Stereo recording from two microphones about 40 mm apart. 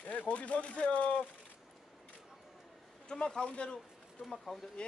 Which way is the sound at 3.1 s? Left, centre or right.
Left.